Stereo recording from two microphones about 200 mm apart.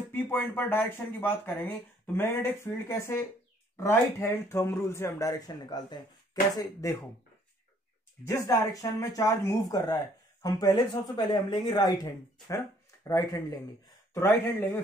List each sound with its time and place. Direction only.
0.1 s speech: 10° left (ahead or behind)
8.3 s speech: 15° left (ahead or behind)